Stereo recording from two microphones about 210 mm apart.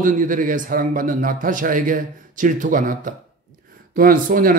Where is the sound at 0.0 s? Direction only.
40° right (ahead or behind).